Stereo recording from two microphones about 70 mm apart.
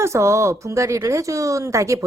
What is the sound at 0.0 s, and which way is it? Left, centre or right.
Speech, right.